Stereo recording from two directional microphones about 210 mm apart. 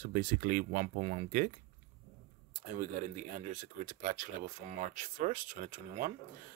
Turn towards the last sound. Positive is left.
turn(degrees=-40)  # may be behind; listen again after turning